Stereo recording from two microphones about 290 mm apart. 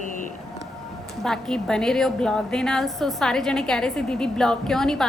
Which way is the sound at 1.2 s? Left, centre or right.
Centre.